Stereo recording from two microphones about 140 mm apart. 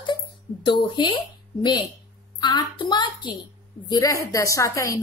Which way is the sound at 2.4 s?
30° left (ahead or behind).